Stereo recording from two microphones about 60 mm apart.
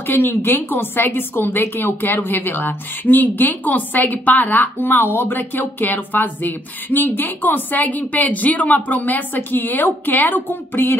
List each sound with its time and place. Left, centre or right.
0.0 s a woman's voice: left